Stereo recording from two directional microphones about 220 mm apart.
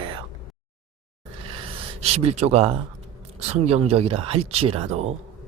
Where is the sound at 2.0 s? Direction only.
30° right (ahead or behind).